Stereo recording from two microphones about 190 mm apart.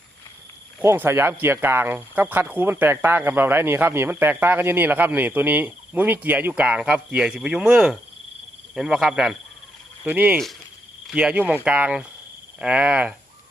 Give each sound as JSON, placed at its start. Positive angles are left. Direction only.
{"t": 0.8, "sound": "speech", "side_deg": -10}